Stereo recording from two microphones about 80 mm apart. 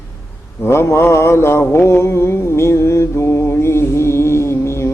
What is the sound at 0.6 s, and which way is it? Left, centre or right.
Mantra, left.